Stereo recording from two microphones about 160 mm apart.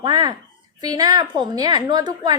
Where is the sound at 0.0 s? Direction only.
25° right (ahead or behind).